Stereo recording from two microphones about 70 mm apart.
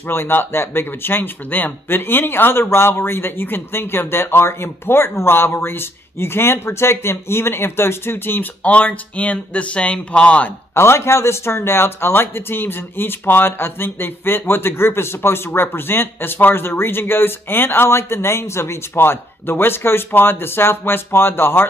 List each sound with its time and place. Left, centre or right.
0.1 s a man's voice: left
8.6 s speech: centre
10.7 s a man's voice: left